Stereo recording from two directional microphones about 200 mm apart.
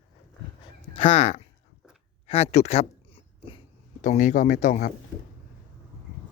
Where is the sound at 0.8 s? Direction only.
30° left (ahead or behind).